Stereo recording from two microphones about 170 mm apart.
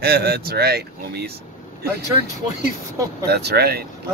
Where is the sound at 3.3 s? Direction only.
70° right (ahead or behind).